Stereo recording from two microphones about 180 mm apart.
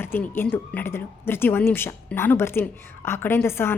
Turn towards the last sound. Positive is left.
turn(degrees=15)  # may be behind; listen again after turning